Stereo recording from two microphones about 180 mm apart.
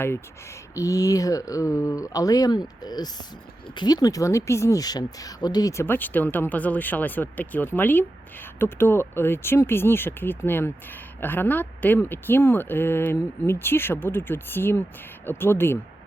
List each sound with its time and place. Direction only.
0.8 s a woman's voice: 20° left (ahead or behind)